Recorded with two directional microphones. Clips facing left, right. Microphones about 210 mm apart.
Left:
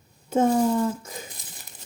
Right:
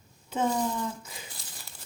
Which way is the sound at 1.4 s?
20° left (ahead or behind).